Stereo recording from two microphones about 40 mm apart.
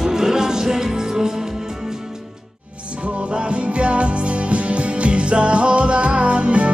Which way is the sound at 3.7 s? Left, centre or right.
Right.